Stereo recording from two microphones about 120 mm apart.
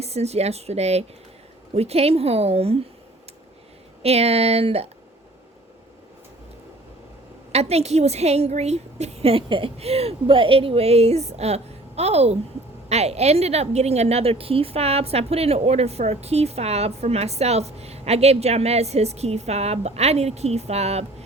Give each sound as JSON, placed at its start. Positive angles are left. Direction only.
{"t": 0.0, "sound": "a woman's voice", "side_deg": -60}
{"t": 4.0, "sound": "a woman's voice", "side_deg": -60}
{"t": 7.5, "sound": "a woman's voice", "side_deg": -60}